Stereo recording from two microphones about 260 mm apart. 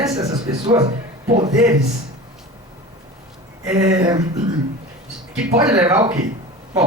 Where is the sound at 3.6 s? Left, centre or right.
Centre.